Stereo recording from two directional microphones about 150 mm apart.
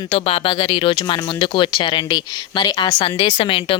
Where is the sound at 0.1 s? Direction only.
40° left (ahead or behind).